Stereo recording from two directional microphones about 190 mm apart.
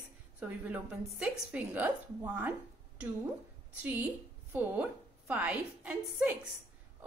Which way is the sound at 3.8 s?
10° right (ahead or behind).